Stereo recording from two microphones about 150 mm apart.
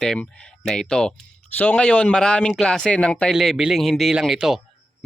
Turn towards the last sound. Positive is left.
turn(degrees=0)  # may be behind; listen again after turning